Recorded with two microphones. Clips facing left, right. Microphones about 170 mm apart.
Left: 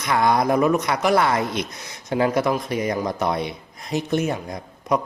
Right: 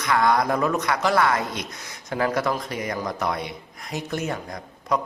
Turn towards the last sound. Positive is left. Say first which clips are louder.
# left 3 dB
turn(degrees=20)  # may be behind; listen again after turning